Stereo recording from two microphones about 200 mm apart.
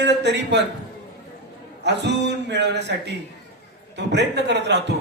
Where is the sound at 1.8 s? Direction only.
60° right (ahead or behind).